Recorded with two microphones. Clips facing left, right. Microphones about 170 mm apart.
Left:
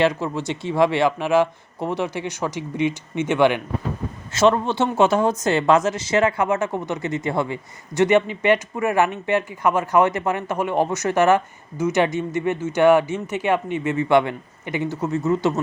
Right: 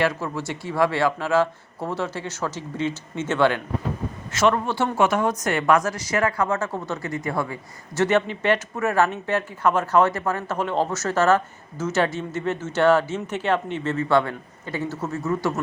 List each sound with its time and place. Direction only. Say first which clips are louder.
0.0 s a woman's voice: left 4 dB; 20° left (ahead or behind)
4.4 s a man's voice: left 3 dB; 25° left (ahead or behind)